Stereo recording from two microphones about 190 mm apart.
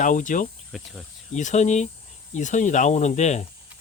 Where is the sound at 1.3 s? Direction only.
40° left (ahead or behind).